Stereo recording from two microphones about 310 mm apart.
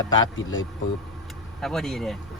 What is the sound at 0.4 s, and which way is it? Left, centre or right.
Speech, left.